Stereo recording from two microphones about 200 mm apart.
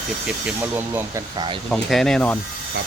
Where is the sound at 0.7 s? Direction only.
10° right (ahead or behind).